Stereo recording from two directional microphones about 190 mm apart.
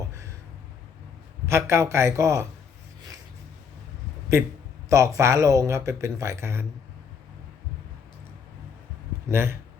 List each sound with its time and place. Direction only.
1.5 s speech: 15° right (ahead or behind)
4.9 s speech: 15° right (ahead or behind)
9.3 s speech: 10° right (ahead or behind)